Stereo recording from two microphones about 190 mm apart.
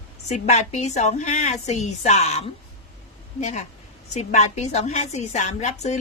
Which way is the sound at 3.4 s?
40° left (ahead or behind).